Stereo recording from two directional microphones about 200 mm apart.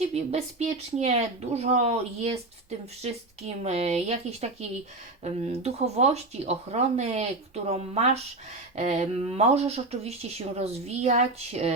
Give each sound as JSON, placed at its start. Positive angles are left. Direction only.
{"t": 0.1, "sound": "speech", "side_deg": -35}